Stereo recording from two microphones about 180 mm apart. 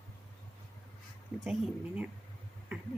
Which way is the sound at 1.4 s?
5° right (ahead or behind).